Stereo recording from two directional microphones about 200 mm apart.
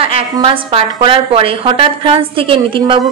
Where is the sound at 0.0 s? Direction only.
30° right (ahead or behind).